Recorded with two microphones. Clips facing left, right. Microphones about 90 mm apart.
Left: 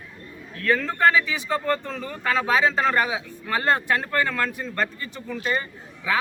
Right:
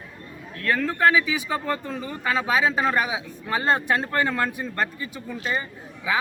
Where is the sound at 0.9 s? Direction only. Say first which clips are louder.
Right 2 dB; 10° right (ahead or behind).